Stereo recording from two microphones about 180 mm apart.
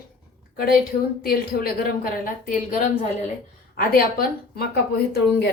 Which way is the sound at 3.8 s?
55° left (ahead or behind).